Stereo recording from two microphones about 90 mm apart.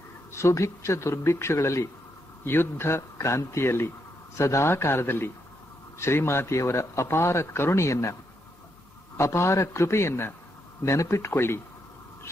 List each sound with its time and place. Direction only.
0.3 s a man's voice: 30° left (ahead or behind)